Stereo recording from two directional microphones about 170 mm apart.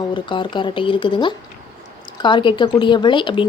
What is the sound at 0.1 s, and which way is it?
Speech, 30° left (ahead or behind).